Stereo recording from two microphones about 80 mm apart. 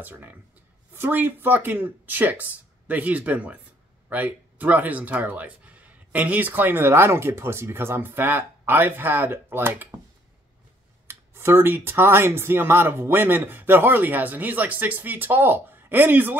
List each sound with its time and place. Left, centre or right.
0.0 s speech: right
11.1 s speech: right